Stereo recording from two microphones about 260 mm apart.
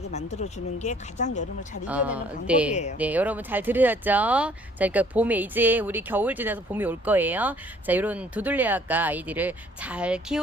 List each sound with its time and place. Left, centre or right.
0.1 s speech: left
1.9 s speech: centre